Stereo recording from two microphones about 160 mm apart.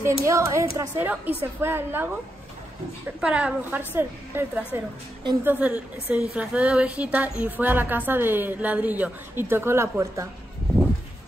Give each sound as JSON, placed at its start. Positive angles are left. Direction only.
{"t": 0.0, "sound": "a woman's voice", "side_deg": -20}
{"t": 3.2, "sound": "a woman's voice", "side_deg": -5}